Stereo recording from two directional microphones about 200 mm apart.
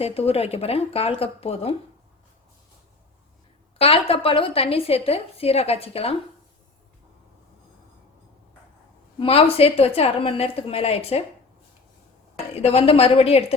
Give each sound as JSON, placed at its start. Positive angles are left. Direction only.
{"t": 0.0, "sound": "a woman's voice", "side_deg": 30}
{"t": 3.8, "sound": "a woman's voice", "side_deg": 30}
{"t": 9.1, "sound": "a woman's voice", "side_deg": 30}
{"t": 12.7, "sound": "a woman's voice", "side_deg": 30}